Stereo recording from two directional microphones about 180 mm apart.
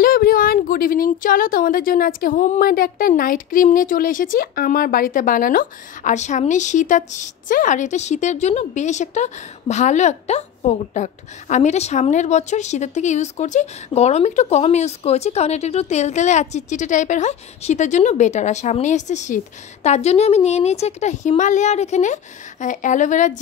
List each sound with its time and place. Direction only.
0.0 s speech: 55° left (ahead or behind)